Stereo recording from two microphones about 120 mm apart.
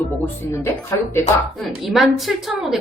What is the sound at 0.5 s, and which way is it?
Speech, 20° left (ahead or behind).